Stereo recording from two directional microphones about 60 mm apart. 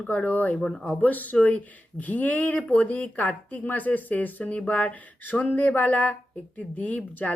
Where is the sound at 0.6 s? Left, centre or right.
Centre.